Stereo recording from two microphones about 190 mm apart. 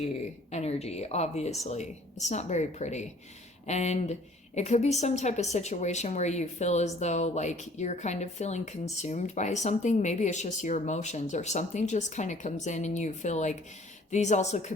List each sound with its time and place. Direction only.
0.5 s a woman's voice: 35° left (ahead or behind)